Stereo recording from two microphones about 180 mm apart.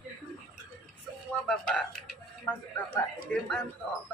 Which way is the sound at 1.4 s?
5° left (ahead or behind).